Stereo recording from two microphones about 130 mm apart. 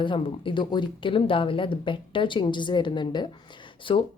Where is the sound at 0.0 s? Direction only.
40° left (ahead or behind).